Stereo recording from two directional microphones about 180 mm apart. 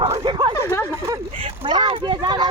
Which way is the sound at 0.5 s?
15° left (ahead or behind).